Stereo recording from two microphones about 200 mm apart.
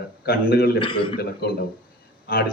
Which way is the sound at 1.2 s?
50° left (ahead or behind).